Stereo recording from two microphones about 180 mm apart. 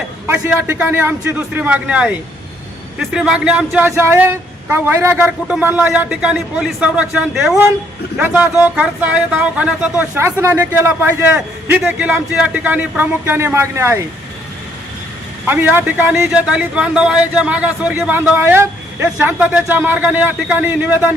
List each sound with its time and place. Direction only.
0.3 s speech: 10° right (ahead or behind)
15.4 s speech: 10° right (ahead or behind)